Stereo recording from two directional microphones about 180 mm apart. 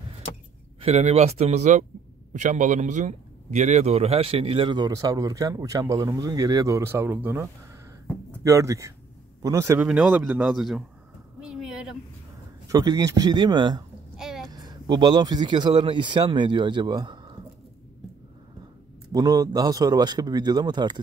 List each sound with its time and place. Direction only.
0.7 s a man's voice: 35° right (ahead or behind); by 7.4 s 15° right (ahead or behind)
8.5 s a man's voice: 15° right (ahead or behind)
9.8 s speech: 5° right (ahead or behind)
11.4 s a sound: 5° right (ahead or behind)
12.6 s a man's voice: 20° right (ahead or behind)
14.1 s a sound: centre (ahead or behind)
14.5 s speech: 25° right (ahead or behind)
19.1 s a man's voice: 20° right (ahead or behind)